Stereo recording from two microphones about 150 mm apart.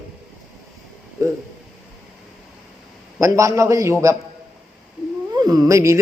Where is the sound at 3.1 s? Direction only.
20° right (ahead or behind).